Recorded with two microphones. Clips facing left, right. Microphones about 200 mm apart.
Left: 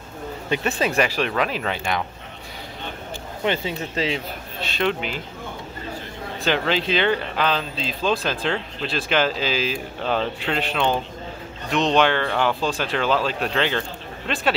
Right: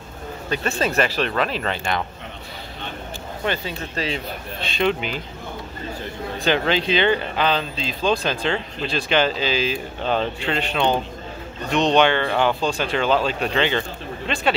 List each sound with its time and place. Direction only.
0.5 s speech: 15° left (ahead or behind)
3.4 s speech: 20° left (ahead or behind)
4.1 s speech: centre (ahead or behind)
6.4 s speech: centre (ahead or behind)